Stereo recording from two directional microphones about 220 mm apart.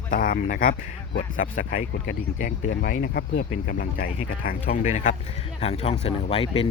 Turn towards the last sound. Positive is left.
turn(degrees=25)  # may be behind; listen again after turning